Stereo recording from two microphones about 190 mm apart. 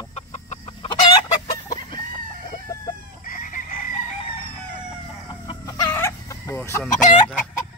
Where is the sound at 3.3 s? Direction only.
45° left (ahead or behind).